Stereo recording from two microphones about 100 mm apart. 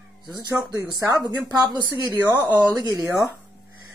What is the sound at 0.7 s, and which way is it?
Speech, 35° right (ahead or behind).